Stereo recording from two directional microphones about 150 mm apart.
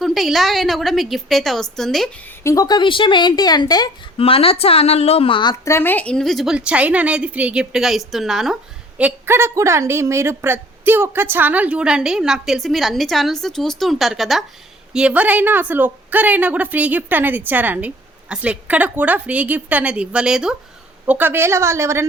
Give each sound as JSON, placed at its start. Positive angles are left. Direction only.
{"t": 0.0, "sound": "a woman's voice", "side_deg": 0}
{"t": 2.4, "sound": "a woman's voice", "side_deg": 20}
{"t": 4.2, "sound": "speech", "side_deg": 40}
{"t": 5.6, "sound": "a woman's voice", "side_deg": 15}
{"t": 9.0, "sound": "a woman's voice", "side_deg": -15}